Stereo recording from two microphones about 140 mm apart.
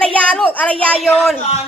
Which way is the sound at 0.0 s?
10° left (ahead or behind).